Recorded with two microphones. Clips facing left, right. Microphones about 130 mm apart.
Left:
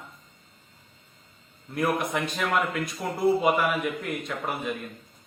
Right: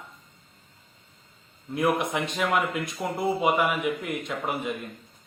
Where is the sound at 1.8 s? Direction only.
20° right (ahead or behind).